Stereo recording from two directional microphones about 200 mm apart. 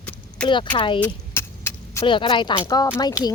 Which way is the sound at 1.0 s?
10° left (ahead or behind).